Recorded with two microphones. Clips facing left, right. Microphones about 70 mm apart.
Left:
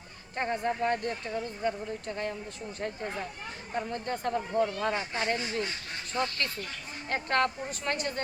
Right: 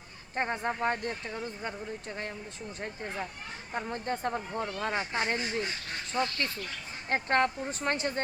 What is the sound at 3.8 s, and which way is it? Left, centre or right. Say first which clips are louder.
A woman's voice: even; right.